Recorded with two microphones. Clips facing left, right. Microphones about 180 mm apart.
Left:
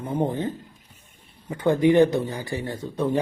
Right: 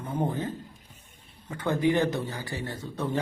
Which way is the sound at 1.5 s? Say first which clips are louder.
Left 7 dB; 20° left (ahead or behind).